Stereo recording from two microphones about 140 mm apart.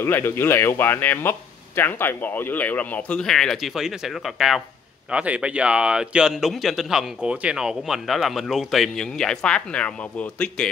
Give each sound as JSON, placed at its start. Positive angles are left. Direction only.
{"t": 0.0, "sound": "speech", "side_deg": 15}